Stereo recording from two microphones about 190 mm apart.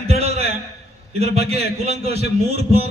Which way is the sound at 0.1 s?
35° right (ahead or behind).